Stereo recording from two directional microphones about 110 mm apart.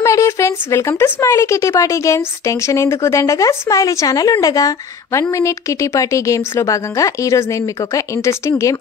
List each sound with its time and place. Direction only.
0.0 s speech: 25° left (ahead or behind)